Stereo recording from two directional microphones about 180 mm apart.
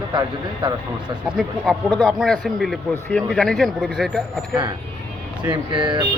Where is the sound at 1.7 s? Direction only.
Centre (ahead or behind).